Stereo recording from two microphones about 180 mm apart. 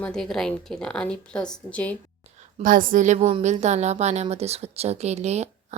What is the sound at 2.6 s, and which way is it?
A woman's voice, 50° right (ahead or behind).